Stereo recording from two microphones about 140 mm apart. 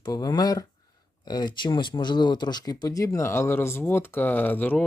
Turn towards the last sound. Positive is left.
turn(degrees=15)  # may be behind; listen again after turning